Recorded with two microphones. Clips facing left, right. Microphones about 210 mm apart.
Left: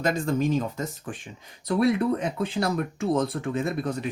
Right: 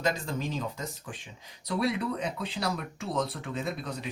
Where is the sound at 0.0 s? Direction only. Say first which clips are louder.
Left 6 dB; 50° left (ahead or behind).